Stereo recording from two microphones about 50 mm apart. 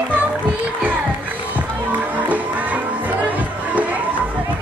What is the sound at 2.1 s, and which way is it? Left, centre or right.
Music, right.